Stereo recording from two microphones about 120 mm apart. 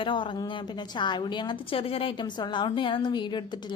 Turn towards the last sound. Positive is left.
turn(degrees=40)  # may be behind; listen again after turning